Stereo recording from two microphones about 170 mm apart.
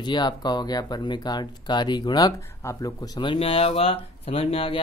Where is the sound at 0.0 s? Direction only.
25° left (ahead or behind).